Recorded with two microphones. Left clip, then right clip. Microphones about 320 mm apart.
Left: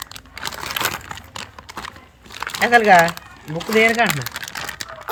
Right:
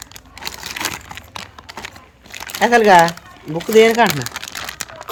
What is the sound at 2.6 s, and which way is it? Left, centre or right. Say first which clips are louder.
Speech: right 2 dB; centre.